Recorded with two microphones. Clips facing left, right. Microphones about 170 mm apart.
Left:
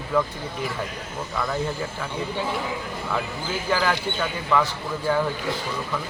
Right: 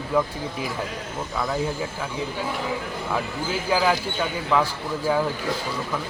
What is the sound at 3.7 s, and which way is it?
Speech, 10° right (ahead or behind).